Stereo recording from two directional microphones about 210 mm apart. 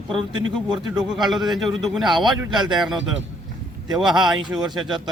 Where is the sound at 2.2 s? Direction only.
20° right (ahead or behind).